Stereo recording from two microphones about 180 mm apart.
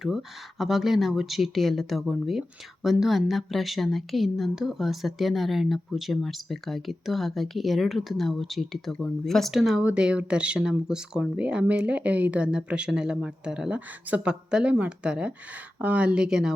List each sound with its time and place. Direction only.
0.0 s speech: centre (ahead or behind)